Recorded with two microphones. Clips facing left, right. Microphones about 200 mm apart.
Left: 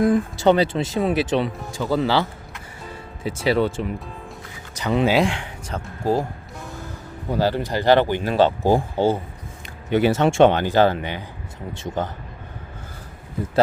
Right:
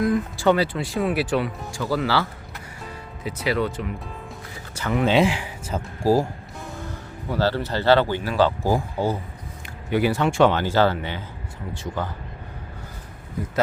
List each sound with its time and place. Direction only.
0.1 s speech: 20° left (ahead or behind)
3.2 s speech: 30° left (ahead or behind)
5.0 s speech: centre (ahead or behind)
7.3 s speech: 15° left (ahead or behind)